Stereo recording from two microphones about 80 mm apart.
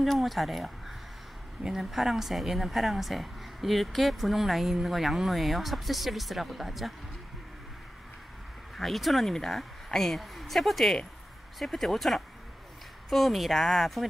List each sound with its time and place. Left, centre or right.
0.0 s a woman's voice: centre
8.7 s a woman's voice: centre